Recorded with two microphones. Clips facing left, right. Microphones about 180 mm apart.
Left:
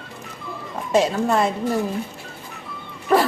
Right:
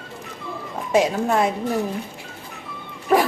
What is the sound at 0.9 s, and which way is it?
Speech, 10° right (ahead or behind).